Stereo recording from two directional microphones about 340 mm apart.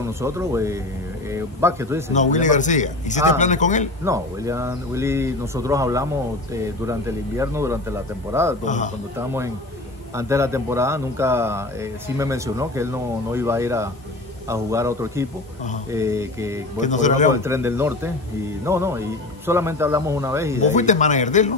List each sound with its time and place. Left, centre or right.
0.0 s speech: centre
2.1 s a man's voice: left
4.0 s speech: centre
8.6 s a man's voice: left
9.2 s speech: centre
16.8 s a man's voice: left
17.3 s speech: centre
20.6 s a man's voice: left